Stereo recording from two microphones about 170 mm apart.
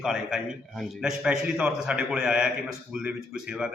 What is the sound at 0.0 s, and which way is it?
Speech, 5° right (ahead or behind).